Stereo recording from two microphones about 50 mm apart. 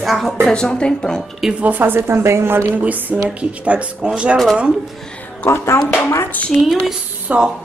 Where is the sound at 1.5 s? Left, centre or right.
Right.